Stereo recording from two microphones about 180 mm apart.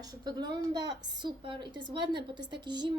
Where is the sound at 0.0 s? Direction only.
20° right (ahead or behind).